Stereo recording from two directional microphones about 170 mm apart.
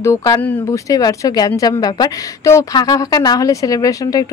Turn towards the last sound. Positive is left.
turn(degrees=20)  # may be behind; listen again after turning